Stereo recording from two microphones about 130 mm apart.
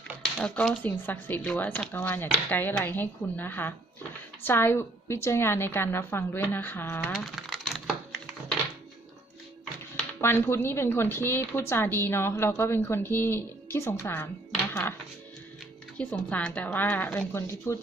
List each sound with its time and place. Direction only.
0.3 s a woman's voice: 5° left (ahead or behind)
10.0 s a woman's voice: 20° left (ahead or behind)
16.0 s a woman's voice: 10° left (ahead or behind)